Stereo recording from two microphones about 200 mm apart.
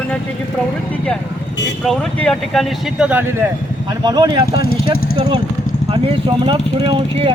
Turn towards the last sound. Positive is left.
turn(degrees=-25)  # may be behind; listen again after turning